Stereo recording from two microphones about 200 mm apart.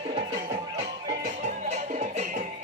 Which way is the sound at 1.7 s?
35° right (ahead or behind).